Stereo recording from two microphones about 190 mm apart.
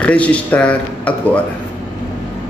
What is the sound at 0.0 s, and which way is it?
Speech, 5° left (ahead or behind).